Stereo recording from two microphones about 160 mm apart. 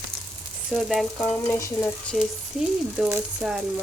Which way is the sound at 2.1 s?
5° left (ahead or behind).